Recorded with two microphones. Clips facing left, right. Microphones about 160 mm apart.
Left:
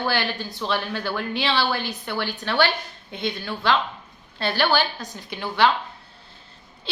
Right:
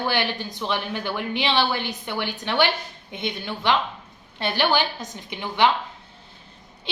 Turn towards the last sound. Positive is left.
turn(degrees=-20)  # may be behind; listen again after turning